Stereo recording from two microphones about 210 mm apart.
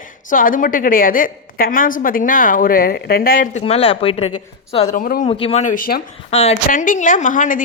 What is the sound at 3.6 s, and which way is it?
A woman's voice, 25° left (ahead or behind).